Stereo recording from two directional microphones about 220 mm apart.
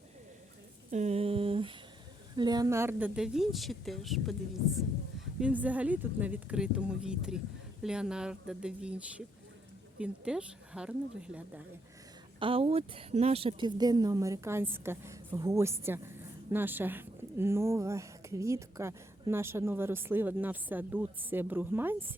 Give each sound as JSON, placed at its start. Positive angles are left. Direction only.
{"t": 0.9, "sound": "a sound", "side_deg": -30}
{"t": 2.3, "sound": "a woman's voice", "side_deg": -20}
{"t": 5.4, "sound": "a woman's voice", "side_deg": -5}
{"t": 12.4, "sound": "a woman's voice", "side_deg": -25}